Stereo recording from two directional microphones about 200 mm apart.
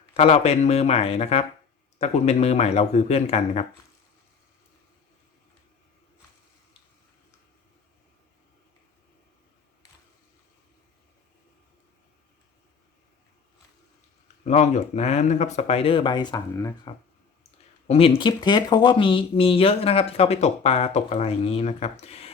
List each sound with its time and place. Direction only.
0.1 s speech: 35° left (ahead or behind)
14.4 s speech: 35° left (ahead or behind); by 16.9 s 15° left (ahead or behind)
17.8 s speech: 30° left (ahead or behind)